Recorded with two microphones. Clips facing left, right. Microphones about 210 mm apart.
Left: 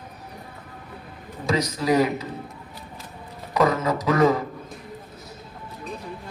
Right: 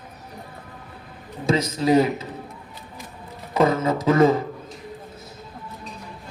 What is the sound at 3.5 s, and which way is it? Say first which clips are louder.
Speech: right 2 dB; 25° right (ahead or behind).